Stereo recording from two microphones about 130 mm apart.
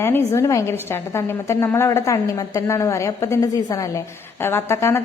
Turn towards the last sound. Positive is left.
turn(degrees=20)  # may be behind; listen again after turning